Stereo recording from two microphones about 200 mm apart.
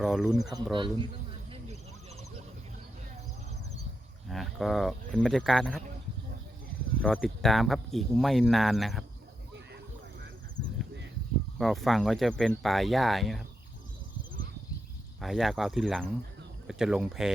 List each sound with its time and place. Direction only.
0.0 s speech: centre (ahead or behind)
0.4 s speech: 20° right (ahead or behind)
4.3 s speech: centre (ahead or behind)
7.2 s speech: centre (ahead or behind)
11.5 s speech: centre (ahead or behind)
15.2 s speech: centre (ahead or behind)